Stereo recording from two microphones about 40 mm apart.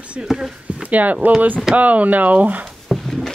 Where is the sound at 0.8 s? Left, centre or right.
Right.